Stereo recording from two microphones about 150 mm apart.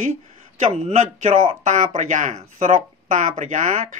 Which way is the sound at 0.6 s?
50° right (ahead or behind).